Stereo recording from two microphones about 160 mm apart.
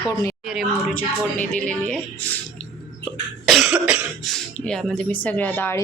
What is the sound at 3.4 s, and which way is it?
Cough, centre (ahead or behind).